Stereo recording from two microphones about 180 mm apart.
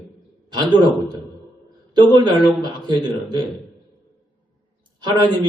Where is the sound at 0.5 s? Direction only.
25° right (ahead or behind).